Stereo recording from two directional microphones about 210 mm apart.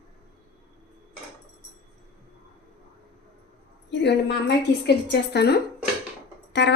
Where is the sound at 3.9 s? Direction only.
55° left (ahead or behind).